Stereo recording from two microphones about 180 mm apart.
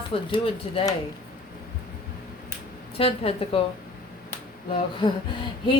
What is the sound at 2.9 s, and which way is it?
Speech, 30° left (ahead or behind).